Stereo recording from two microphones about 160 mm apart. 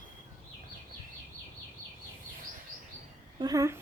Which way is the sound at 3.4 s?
20° right (ahead or behind).